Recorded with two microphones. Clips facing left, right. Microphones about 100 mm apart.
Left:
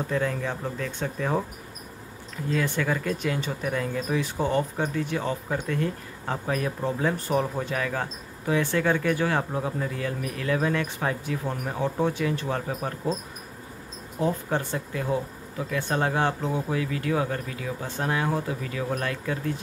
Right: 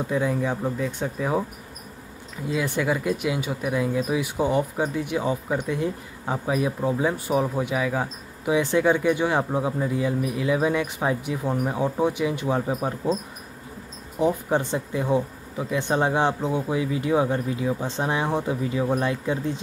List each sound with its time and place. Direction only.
0.0 s speech: 10° right (ahead or behind)
2.4 s speech: 15° right (ahead or behind)
14.2 s speech: 20° right (ahead or behind)